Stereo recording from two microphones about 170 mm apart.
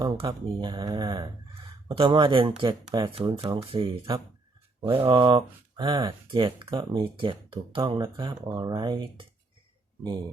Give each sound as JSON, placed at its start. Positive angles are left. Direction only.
{"t": 0.0, "sound": "speech", "side_deg": -25}